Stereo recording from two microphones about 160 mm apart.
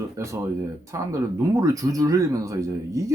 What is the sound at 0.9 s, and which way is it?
Speech, 20° right (ahead or behind).